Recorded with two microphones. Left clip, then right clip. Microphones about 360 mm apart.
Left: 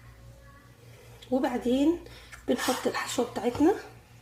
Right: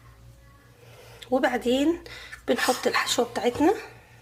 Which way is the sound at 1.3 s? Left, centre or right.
Right.